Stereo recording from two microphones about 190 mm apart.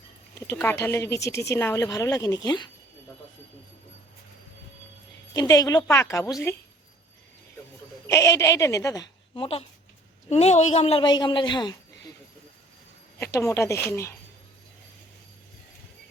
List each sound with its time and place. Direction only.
0.5 s speech: 10° left (ahead or behind)
5.3 s speech: 20° left (ahead or behind)
8.0 s a woman's voice: 15° left (ahead or behind)
13.1 s speech: 15° left (ahead or behind)